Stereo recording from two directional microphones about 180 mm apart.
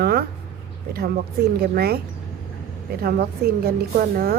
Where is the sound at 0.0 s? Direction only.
60° right (ahead or behind).